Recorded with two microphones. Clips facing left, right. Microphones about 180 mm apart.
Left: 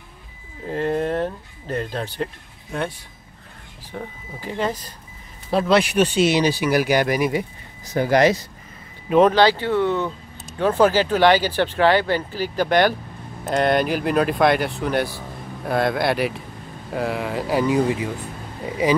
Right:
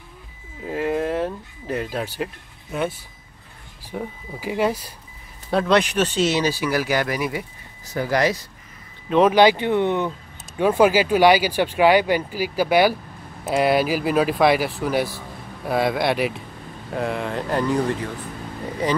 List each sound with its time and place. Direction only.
0.7 s speech: 5° right (ahead or behind)
5.5 s speech: 5° left (ahead or behind); by 8.4 s 20° left (ahead or behind)
9.3 s speech: 15° right (ahead or behind); by 18.1 s 10° left (ahead or behind)